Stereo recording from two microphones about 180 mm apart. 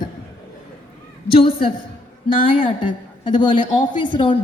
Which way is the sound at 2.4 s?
30° left (ahead or behind).